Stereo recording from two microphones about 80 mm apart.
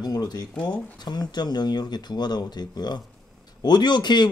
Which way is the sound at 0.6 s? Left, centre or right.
Left.